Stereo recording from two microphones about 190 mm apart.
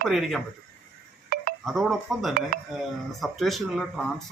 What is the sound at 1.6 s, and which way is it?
Speech, centre (ahead or behind).